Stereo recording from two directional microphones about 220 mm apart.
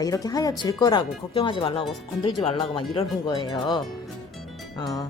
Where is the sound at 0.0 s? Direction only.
15° left (ahead or behind).